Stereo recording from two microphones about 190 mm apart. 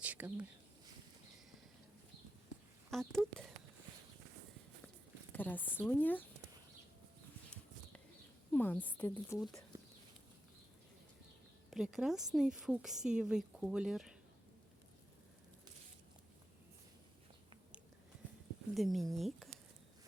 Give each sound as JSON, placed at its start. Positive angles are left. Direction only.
{"t": 0.0, "sound": "a sound", "side_deg": -10}
{"t": 2.9, "sound": "a woman's voice", "side_deg": 0}
{"t": 5.3, "sound": "speech", "side_deg": 10}
{"t": 8.5, "sound": "speech", "side_deg": 10}
{"t": 11.7, "sound": "a woman's voice", "side_deg": 0}
{"t": 18.7, "sound": "speech", "side_deg": 0}